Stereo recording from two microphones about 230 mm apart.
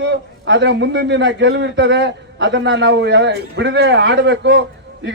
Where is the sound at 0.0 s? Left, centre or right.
Right.